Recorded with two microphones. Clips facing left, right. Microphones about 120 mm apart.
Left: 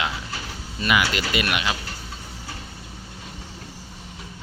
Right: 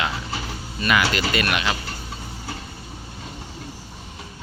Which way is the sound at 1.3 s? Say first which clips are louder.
Right 1 dB; 15° left (ahead or behind).